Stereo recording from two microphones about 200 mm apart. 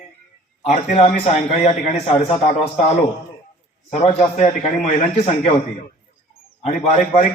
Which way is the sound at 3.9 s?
35° left (ahead or behind).